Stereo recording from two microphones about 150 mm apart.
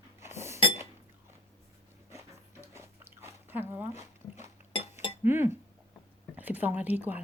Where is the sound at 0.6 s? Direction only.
35° left (ahead or behind).